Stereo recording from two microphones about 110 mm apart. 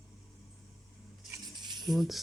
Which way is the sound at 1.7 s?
40° right (ahead or behind).